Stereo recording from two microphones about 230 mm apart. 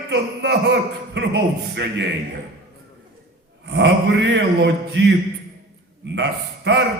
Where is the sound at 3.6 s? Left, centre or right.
Right.